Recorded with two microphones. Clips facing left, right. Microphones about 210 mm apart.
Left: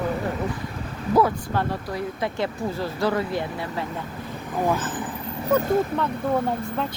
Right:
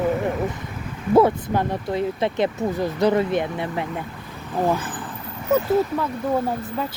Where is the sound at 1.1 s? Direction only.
25° right (ahead or behind).